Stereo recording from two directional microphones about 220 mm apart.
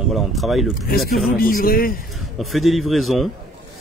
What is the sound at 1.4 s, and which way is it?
Speech, 40° left (ahead or behind).